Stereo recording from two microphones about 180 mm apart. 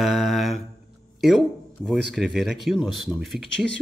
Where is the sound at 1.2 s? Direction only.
Centre (ahead or behind).